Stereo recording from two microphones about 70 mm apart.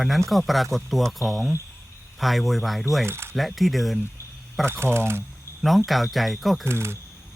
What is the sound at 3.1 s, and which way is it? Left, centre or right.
Speech, right.